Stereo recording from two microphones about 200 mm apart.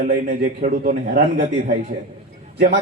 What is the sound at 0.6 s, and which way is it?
Speech, 45° right (ahead or behind).